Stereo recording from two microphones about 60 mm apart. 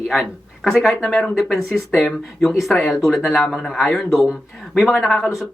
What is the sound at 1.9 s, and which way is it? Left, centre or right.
Speech, left.